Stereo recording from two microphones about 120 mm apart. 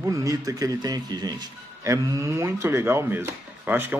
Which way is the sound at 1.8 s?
25° right (ahead or behind).